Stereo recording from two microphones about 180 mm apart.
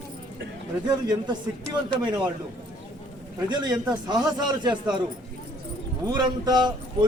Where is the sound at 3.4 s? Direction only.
25° right (ahead or behind).